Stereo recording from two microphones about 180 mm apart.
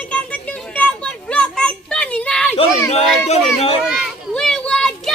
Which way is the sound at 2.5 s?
35° left (ahead or behind).